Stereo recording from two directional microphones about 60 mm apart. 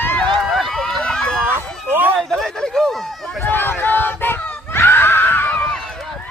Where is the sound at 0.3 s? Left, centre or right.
Centre.